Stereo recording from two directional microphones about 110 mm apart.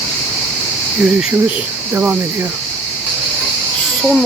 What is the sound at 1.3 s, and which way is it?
Speech, 15° right (ahead or behind).